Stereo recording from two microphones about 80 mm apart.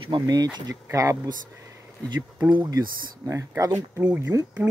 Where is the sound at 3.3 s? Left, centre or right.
Right.